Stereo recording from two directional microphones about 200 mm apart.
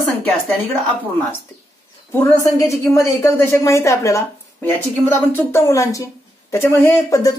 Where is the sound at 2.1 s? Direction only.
15° left (ahead or behind).